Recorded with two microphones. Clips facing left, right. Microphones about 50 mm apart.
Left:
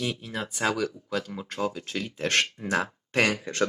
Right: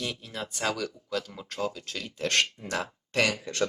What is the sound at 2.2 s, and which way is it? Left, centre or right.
Speech, left.